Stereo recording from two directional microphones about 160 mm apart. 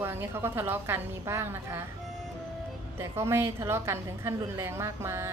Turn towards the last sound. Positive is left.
turn(degrees=-15)  # may be behind; listen again after turning